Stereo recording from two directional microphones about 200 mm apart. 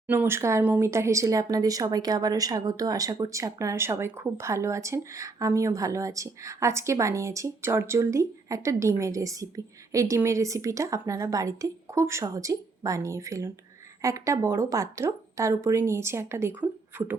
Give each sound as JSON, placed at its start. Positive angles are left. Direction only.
{"t": 0.1, "sound": "speech", "side_deg": -10}